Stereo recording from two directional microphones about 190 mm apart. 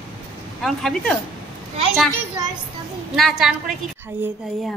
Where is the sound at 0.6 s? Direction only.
Centre (ahead or behind).